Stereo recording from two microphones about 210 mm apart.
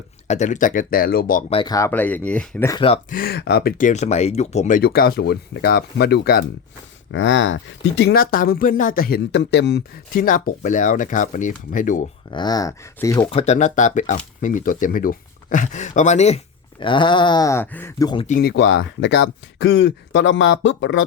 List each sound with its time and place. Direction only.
0.3 s speech: 35° left (ahead or behind)
1.5 s speech: 20° left (ahead or behind); by 2.6 s 5° left (ahead or behind)
2.6 s speech: 20° left (ahead or behind)
2.9 s speech: 40° left (ahead or behind)
7.1 s speech: 60° left (ahead or behind); by 12.0 s 40° left (ahead or behind)
12.3 s speech: 20° left (ahead or behind)
13.3 s speech: 30° left (ahead or behind)
18.3 s speech: 45° left (ahead or behind); by 21.0 s 60° left (ahead or behind)